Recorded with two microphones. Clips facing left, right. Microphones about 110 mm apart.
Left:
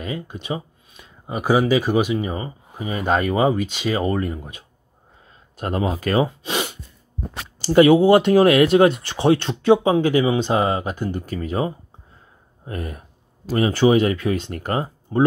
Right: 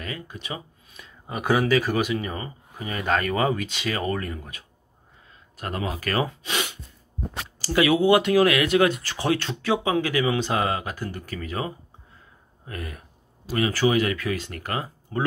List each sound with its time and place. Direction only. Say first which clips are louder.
0.0 s a sound: left 6 dB; 20° left (ahead or behind)
1.4 s speech: left 3 dB; 15° left (ahead or behind)
7.6 s speech: left 7 dB; 30° left (ahead or behind)